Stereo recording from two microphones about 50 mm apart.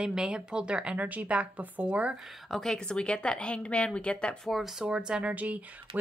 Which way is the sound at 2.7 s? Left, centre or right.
Centre.